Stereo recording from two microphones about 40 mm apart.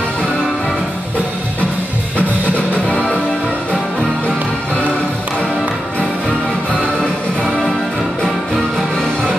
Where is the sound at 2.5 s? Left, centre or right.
Left.